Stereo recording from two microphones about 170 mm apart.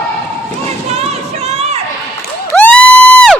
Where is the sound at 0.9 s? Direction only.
40° right (ahead or behind).